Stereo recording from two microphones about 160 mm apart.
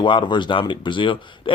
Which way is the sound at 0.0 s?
30° left (ahead or behind).